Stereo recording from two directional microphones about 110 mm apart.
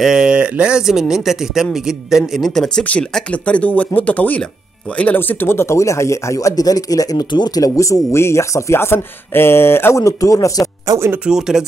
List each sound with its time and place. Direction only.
0.0 s speech: 5° right (ahead or behind); by 10.6 s 30° left (ahead or behind)
10.9 s speech: 25° right (ahead or behind)
11.2 s speech: 5° right (ahead or behind)